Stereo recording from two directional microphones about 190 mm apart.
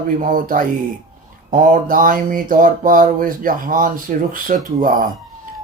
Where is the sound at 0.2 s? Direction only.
45° right (ahead or behind).